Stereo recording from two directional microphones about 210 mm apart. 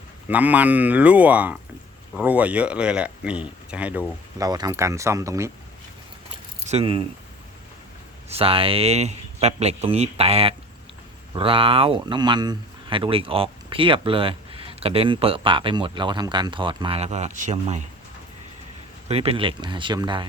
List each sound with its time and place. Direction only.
0.3 s speech: 5° right (ahead or behind)
4.4 s speech: 20° right (ahead or behind)
6.7 s speech: 25° right (ahead or behind)
8.3 s speech: 25° right (ahead or behind)
19.0 s speech: 30° right (ahead or behind)